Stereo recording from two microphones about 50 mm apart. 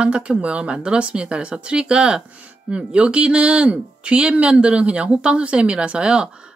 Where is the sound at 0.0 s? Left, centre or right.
Right.